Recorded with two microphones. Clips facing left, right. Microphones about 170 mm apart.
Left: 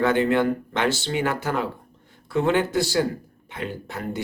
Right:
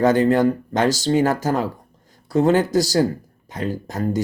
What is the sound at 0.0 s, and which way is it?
Speech, 40° right (ahead or behind).